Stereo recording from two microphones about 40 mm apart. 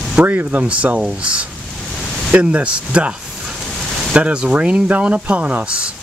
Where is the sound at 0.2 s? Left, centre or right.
Right.